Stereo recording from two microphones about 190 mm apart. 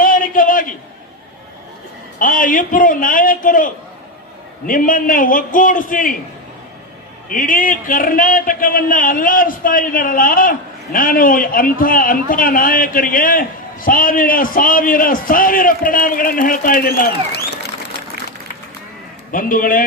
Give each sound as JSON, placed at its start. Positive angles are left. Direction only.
{"t": 0.0, "sound": "a sound", "side_deg": 45}
{"t": 2.1, "sound": "a man's voice", "side_deg": 45}
{"t": 7.3, "sound": "a man's voice", "side_deg": 45}
{"t": 19.3, "sound": "a man's voice", "side_deg": 45}